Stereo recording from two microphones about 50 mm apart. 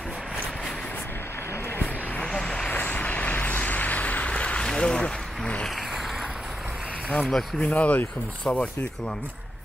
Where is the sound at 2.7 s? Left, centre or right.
Left.